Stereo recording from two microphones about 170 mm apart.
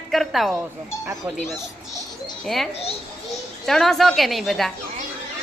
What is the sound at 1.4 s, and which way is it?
Speech, 40° left (ahead or behind).